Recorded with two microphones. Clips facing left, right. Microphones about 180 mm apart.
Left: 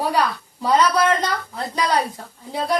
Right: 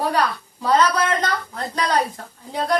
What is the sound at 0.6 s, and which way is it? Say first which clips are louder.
Speech: left 1 dB; 10° left (ahead or behind).